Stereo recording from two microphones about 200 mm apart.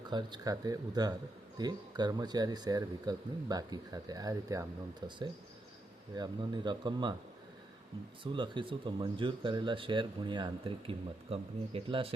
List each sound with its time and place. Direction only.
0.1 s speech: 20° right (ahead or behind)
8.2 s speech: 25° right (ahead or behind)